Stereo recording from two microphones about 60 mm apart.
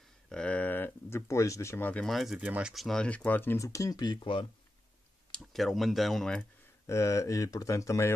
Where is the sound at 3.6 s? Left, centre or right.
Left.